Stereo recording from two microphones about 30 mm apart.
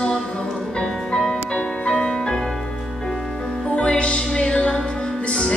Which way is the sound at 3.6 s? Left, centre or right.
Left.